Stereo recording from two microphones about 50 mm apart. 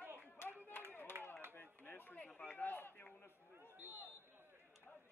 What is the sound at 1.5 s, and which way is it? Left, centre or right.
Chop, left.